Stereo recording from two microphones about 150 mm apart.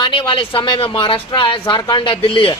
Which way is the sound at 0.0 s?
35° left (ahead or behind).